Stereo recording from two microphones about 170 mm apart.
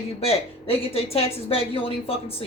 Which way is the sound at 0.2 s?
35° left (ahead or behind).